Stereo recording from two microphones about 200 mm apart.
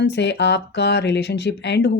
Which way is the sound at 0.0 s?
60° left (ahead or behind).